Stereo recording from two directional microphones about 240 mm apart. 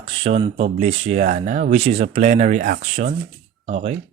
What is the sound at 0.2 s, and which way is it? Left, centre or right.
Speech, right.